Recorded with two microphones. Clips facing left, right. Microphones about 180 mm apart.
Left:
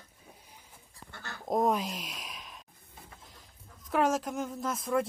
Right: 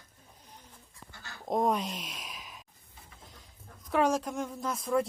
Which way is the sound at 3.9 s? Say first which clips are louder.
Right 1 dB; centre (ahead or behind).